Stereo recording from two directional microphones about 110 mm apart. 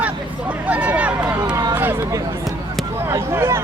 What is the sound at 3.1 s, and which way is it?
Speech, 25° right (ahead or behind).